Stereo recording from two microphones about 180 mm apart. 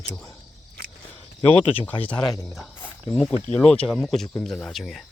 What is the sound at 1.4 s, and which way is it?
Speech, 30° left (ahead or behind).